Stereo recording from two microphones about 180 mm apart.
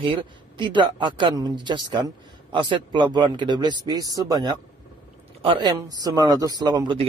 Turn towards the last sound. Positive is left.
turn(degrees=-25)  # may be behind; listen again after turning